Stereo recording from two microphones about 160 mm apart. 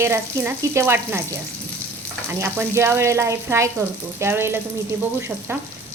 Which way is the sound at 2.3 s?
15° right (ahead or behind).